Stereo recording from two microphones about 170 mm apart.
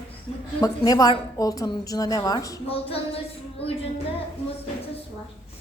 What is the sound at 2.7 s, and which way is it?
Child singing, 35° left (ahead or behind).